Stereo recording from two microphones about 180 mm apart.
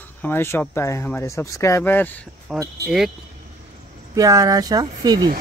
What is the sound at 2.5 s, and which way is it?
Speech, centre (ahead or behind).